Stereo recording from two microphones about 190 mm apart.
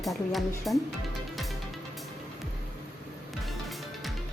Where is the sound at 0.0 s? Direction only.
Centre (ahead or behind).